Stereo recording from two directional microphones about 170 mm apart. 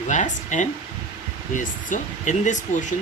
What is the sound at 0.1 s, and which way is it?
Speech, 45° left (ahead or behind).